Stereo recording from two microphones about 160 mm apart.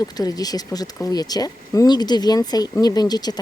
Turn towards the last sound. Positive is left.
turn(degrees=25)  # may be behind; listen again after turning